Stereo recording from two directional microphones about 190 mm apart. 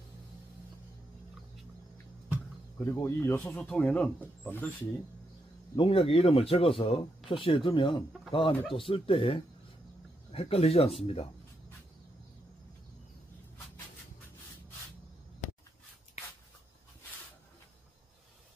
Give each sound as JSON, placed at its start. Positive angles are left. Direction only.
{"t": 2.8, "sound": "speech", "side_deg": 15}
{"t": 5.8, "sound": "speech", "side_deg": 30}